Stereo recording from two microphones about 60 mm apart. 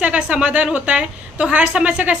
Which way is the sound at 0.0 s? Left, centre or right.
Centre.